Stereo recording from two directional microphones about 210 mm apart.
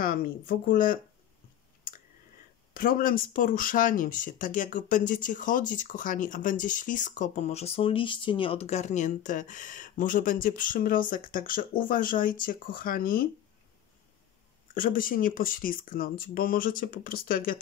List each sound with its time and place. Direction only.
0.0 s speech: 40° left (ahead or behind)
2.7 s speech: 40° left (ahead or behind)
14.7 s speech: 40° left (ahead or behind)